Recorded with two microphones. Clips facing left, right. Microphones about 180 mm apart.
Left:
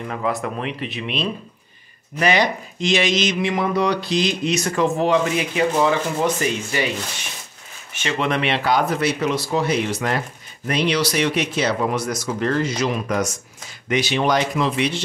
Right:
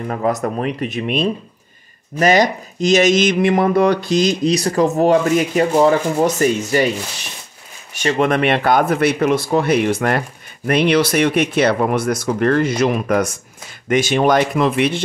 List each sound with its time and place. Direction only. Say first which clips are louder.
0.1 s speech: right 5 dB; 40° right (ahead or behind)
7.9 s speech: right 6 dB; 40° right (ahead or behind)